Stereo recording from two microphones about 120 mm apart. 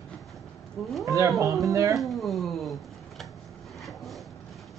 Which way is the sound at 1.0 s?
25° right (ahead or behind).